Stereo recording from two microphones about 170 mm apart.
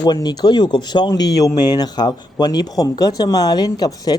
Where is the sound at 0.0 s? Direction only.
25° left (ahead or behind).